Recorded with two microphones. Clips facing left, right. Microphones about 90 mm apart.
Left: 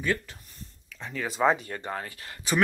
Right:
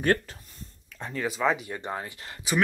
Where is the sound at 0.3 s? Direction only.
35° right (ahead or behind).